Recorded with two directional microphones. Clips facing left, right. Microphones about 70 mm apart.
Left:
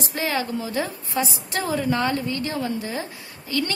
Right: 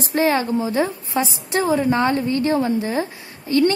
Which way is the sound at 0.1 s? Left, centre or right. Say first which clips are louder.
Right 8 dB; right.